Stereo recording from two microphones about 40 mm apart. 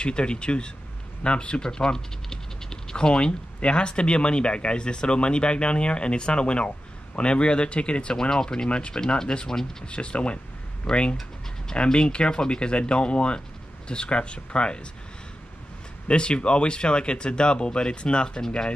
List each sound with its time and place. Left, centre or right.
0.0 s speech: left
8.6 s speech: left
8.9 s speech: centre
9.8 s speech: left
16.1 s speech: left